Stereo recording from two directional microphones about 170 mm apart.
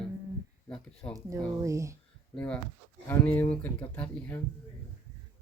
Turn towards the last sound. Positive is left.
turn(degrees=10)  # may be behind; listen again after turning